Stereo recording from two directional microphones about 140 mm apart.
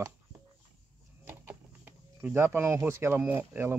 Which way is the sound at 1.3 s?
15° right (ahead or behind).